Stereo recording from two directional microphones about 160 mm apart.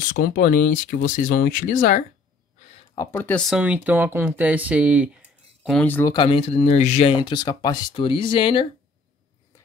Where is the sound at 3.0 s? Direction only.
15° left (ahead or behind); by 5.8 s 5° right (ahead or behind).